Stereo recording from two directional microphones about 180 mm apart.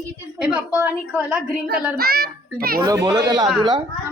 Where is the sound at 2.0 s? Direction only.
55° right (ahead or behind).